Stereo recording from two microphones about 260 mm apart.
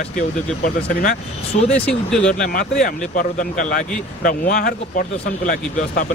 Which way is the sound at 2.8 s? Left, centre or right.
Left.